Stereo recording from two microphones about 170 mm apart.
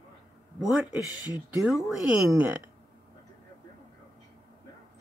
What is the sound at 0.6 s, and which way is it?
Speech, 5° right (ahead or behind).